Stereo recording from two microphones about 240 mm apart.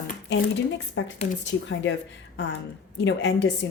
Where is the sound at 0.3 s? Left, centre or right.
Left.